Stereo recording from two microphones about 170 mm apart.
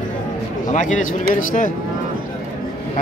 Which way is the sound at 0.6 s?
50° left (ahead or behind).